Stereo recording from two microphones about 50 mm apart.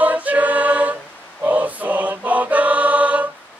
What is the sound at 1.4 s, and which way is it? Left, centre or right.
Mantra, right.